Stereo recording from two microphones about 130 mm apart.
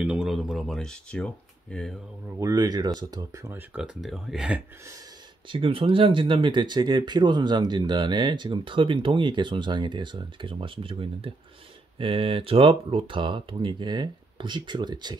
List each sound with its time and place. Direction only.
0.0 s speech: 5° right (ahead or behind)
2.4 s speech: 30° right (ahead or behind)
3.5 s speech: 5° right (ahead or behind)
5.5 s speech: 45° right (ahead or behind)